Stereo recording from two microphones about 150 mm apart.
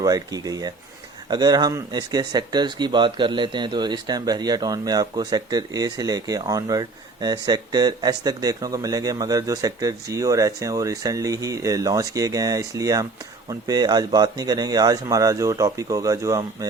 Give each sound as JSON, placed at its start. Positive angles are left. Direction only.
{"t": 0.0, "sound": "speech", "side_deg": -25}